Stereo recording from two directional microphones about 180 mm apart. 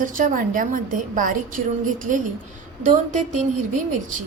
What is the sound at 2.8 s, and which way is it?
Speech, 45° right (ahead or behind).